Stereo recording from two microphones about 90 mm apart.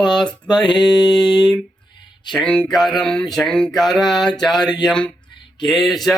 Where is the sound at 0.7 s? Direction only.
55° left (ahead or behind).